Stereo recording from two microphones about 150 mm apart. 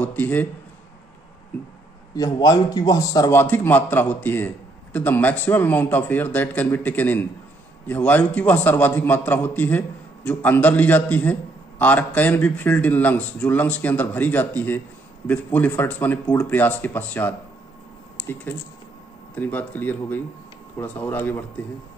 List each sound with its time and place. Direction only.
0.0 s a man's voice: 10° left (ahead or behind)
2.1 s a man's voice: 25° left (ahead or behind)